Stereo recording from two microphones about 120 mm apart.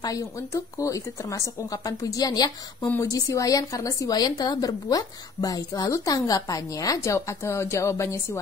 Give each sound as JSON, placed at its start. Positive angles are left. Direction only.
{"t": 0.0, "sound": "a woman's voice", "side_deg": 30}